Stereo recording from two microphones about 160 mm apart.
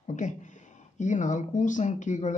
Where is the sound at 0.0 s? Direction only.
50° left (ahead or behind).